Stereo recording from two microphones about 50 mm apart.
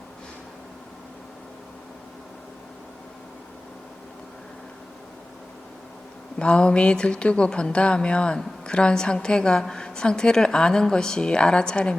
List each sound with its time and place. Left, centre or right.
6.4 s a woman's voice: centre